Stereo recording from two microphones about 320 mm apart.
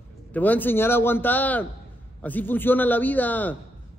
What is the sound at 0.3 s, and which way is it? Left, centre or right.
A man's voice, centre.